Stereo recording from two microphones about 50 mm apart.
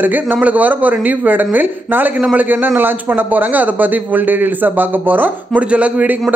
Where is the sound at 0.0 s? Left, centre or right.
Right.